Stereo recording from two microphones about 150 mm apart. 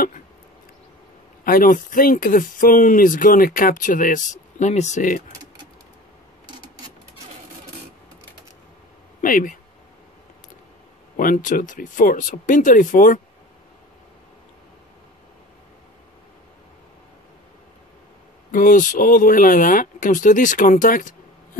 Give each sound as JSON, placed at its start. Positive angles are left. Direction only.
{"t": 1.4, "sound": "speech", "side_deg": 70}
{"t": 9.2, "sound": "speech", "side_deg": 65}
{"t": 11.1, "sound": "speech", "side_deg": 65}
{"t": 18.5, "sound": "speech", "side_deg": 65}